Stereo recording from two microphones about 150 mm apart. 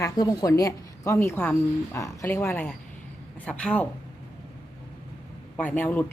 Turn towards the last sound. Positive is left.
turn(degrees=10)  # may be behind; listen again after turning